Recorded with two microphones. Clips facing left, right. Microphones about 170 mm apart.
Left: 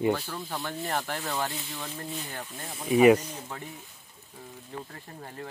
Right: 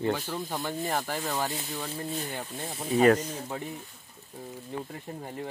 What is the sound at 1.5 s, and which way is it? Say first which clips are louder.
Speech: right 3 dB; 15° right (ahead or behind).